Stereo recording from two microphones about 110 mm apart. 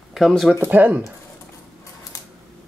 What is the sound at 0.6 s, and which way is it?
Speech, 15° right (ahead or behind).